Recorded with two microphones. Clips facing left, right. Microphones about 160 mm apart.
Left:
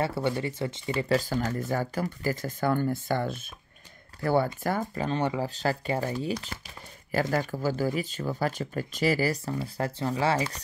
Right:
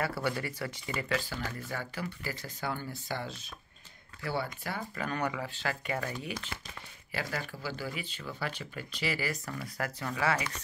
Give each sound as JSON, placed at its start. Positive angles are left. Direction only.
{"t": 0.0, "sound": "speech", "side_deg": 25}
{"t": 4.9, "sound": "speech", "side_deg": 25}